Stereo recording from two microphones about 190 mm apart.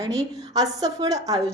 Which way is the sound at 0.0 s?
20° right (ahead or behind).